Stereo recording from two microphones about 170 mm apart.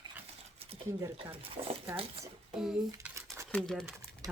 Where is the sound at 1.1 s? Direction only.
35° right (ahead or behind).